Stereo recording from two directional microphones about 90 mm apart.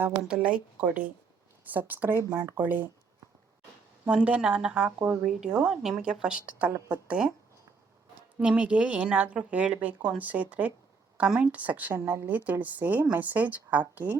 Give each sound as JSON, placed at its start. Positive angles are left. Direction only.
{"t": 0.2, "sound": "a woman's voice", "side_deg": -10}
{"t": 4.0, "sound": "a woman's voice", "side_deg": -10}
{"t": 5.2, "sound": "a woman's voice", "side_deg": -5}
{"t": 8.4, "sound": "a woman's voice", "side_deg": -15}
{"t": 11.9, "sound": "a woman's voice", "side_deg": -30}